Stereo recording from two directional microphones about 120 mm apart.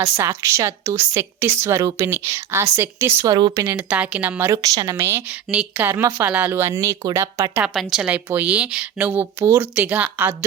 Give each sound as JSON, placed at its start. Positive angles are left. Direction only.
{"t": 0.0, "sound": "speech", "side_deg": -25}
{"t": 3.2, "sound": "speech", "side_deg": -35}
{"t": 3.7, "sound": "speech", "side_deg": -15}
{"t": 7.7, "sound": "a woman's voice", "side_deg": 0}